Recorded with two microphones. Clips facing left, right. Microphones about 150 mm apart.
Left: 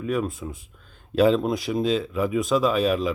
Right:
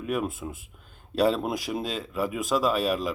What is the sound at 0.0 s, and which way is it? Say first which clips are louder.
Speech: left 3 dB; 5° right (ahead or behind).